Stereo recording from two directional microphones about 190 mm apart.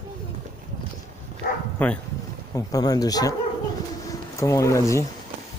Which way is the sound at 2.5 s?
20° left (ahead or behind).